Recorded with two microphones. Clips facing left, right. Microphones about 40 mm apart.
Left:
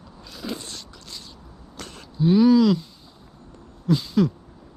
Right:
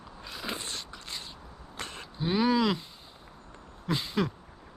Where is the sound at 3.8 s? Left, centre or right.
Right.